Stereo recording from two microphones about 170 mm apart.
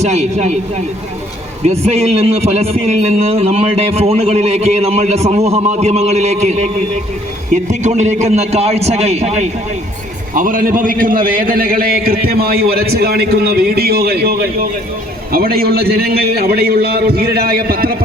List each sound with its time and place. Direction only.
0.0 s a man's voice: 40° right (ahead or behind)
1.6 s a man's voice: 40° right (ahead or behind)
10.3 s a man's voice: 55° right (ahead or behind)